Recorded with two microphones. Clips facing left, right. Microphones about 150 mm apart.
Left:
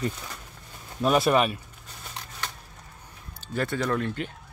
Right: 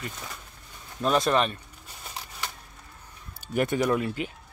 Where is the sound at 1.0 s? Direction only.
10° left (ahead or behind).